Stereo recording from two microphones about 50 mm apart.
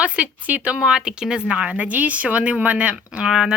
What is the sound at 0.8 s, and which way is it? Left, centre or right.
Speech, centre.